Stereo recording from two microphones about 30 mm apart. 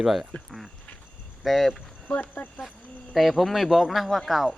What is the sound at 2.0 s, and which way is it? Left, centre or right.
Speech, left.